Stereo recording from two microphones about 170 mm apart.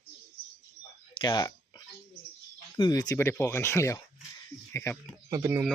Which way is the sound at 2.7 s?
25° left (ahead or behind).